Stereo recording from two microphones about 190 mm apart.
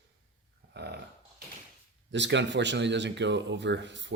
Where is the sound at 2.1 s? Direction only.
70° right (ahead or behind).